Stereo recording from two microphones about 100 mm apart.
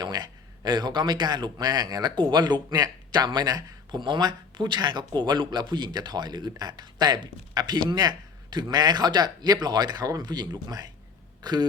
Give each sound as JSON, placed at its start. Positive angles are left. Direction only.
{"t": 0.0, "sound": "a man's voice", "side_deg": -45}
{"t": 11.4, "sound": "burping", "side_deg": -45}